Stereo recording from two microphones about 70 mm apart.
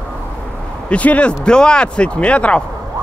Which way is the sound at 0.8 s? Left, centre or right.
Centre.